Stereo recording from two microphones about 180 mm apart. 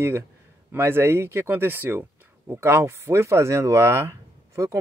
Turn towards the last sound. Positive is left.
turn(degrees=-15)  # may be behind; listen again after turning